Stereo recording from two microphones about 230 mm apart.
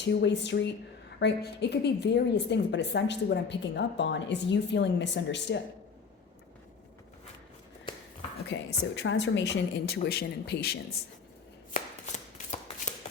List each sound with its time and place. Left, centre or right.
0.0 s a woman's voice: left
8.5 s a woman's voice: left
11.7 s chopping: left